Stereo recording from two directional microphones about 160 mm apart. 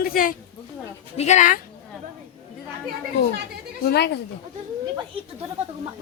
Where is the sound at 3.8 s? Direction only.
90° left.